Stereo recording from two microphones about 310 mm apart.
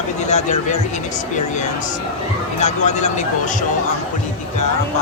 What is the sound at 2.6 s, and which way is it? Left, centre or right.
Speech, left.